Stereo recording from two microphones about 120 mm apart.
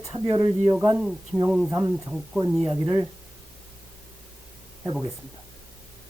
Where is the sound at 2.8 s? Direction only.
30° right (ahead or behind).